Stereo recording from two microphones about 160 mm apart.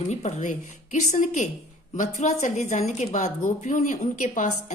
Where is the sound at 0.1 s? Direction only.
45° left (ahead or behind).